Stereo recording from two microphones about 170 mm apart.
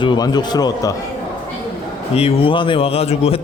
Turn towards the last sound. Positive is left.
turn(degrees=35)  # may be behind; listen again after turning